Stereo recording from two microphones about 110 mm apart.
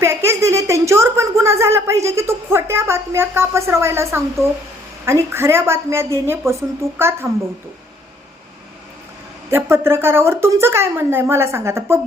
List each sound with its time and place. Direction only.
0.0 s a woman's voice: 25° right (ahead or behind)
9.5 s a woman's voice: 20° right (ahead or behind)